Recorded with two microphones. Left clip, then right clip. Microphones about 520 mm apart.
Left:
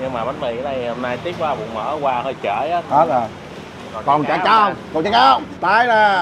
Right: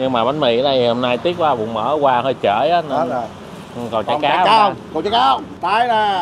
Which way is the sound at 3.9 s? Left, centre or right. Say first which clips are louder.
Right 3 dB; right.